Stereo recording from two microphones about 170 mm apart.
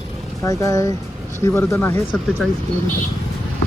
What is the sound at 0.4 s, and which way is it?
Speech, 20° left (ahead or behind).